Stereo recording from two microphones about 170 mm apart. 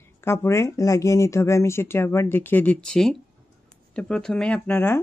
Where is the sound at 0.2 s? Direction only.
15° left (ahead or behind).